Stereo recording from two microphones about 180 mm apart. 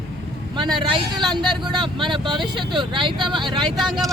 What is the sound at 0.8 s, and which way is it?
Speech, 25° right (ahead or behind).